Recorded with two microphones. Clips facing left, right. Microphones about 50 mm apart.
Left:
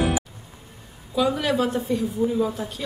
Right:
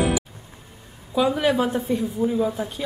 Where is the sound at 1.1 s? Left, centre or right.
Centre.